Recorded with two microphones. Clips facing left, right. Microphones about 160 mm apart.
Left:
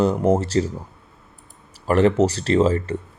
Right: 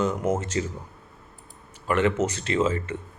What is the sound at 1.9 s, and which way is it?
Speech, 35° left (ahead or behind).